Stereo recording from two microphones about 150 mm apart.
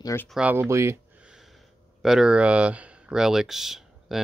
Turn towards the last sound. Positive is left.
turn(degrees=0)  # may be behind; listen again after turning